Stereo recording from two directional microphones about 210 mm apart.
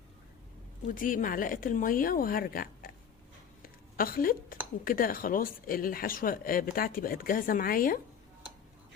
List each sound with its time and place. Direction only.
0.9 s speech: 40° left (ahead or behind)
3.6 s a sound: 45° left (ahead or behind)
4.9 s speech: 45° left (ahead or behind)